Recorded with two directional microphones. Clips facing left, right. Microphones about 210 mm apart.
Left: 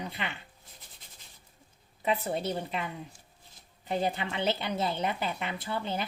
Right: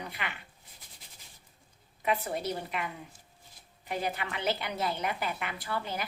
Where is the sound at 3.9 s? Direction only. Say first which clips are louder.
Left 3 dB; 25° left (ahead or behind).